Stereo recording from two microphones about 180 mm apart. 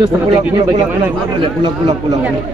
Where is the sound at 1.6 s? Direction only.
25° right (ahead or behind).